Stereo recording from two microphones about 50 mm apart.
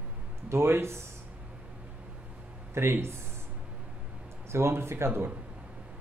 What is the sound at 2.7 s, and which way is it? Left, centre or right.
Music, right.